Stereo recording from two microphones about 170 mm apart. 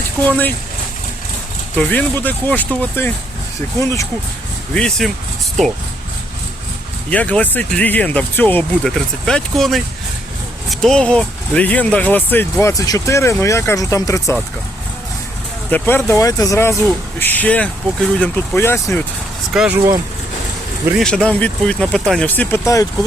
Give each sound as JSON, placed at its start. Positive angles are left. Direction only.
{"t": 0.3, "sound": "speech", "side_deg": 10}
{"t": 1.7, "sound": "speech", "side_deg": 10}
{"t": 4.7, "sound": "speech", "side_deg": 5}
{"t": 7.1, "sound": "speech", "side_deg": 10}
{"t": 15.7, "sound": "speech", "side_deg": 10}
{"t": 19.5, "sound": "speech", "side_deg": -5}
{"t": 21.0, "sound": "speech", "side_deg": 5}